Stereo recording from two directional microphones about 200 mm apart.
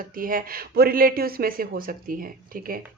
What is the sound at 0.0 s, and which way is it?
Speech, 45° right (ahead or behind).